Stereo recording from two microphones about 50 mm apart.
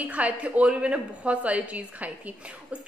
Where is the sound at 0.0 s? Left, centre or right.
Right.